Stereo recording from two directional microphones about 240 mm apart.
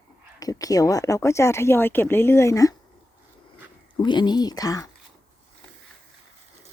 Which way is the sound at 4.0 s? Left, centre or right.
Centre.